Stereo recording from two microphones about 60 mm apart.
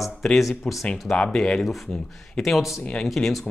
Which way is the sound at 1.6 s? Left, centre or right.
Centre.